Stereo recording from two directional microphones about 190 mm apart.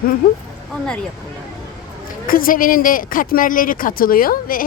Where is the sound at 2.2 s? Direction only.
50° left (ahead or behind).